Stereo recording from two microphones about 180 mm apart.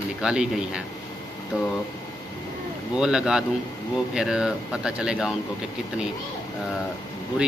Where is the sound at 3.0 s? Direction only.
5° right (ahead or behind).